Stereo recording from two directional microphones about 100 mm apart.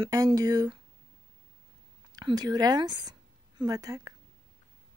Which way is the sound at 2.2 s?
45° right (ahead or behind).